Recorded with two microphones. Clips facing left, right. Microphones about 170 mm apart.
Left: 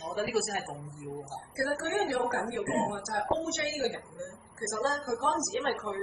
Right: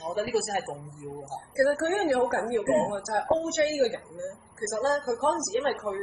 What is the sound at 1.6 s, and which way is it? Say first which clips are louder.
A woman's voice: right 6 dB; 50° right (ahead or behind).